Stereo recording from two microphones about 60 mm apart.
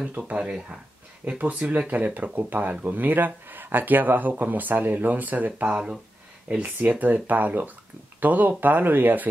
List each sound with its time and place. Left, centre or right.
0.3 s speech: right
5.7 s speech: centre
6.5 s speech: right